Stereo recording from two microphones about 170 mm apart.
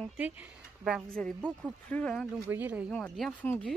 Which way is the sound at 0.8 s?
Centre (ahead or behind).